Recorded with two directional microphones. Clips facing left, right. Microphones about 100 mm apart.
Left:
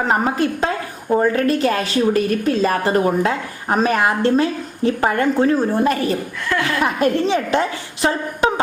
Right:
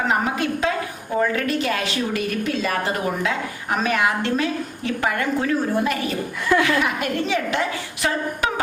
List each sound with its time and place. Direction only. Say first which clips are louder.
0.1 s a woman's voice: left 4 dB; 40° left (ahead or behind)